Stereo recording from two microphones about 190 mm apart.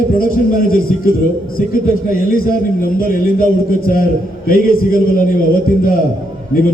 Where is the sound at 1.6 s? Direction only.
45° left (ahead or behind).